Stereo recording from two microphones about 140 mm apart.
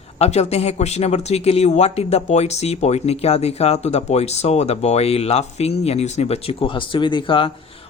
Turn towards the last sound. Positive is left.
turn(degrees=40)  # may be behind; listen again after turning